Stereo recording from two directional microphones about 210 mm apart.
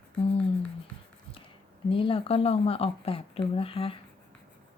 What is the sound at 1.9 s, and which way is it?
Speech, 25° left (ahead or behind).